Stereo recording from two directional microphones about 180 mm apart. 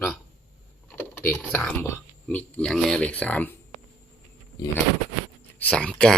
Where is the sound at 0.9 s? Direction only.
10° left (ahead or behind).